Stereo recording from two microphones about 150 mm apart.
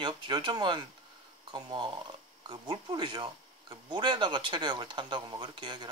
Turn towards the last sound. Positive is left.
turn(degrees=-30)  # may be behind; listen again after turning